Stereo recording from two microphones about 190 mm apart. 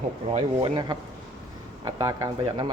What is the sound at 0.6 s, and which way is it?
Speech, 25° right (ahead or behind).